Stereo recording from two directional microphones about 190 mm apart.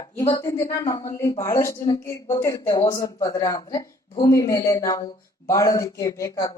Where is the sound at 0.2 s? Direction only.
15° left (ahead or behind).